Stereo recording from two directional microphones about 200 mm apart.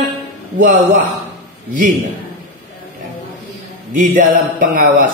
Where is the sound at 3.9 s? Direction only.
40° right (ahead or behind).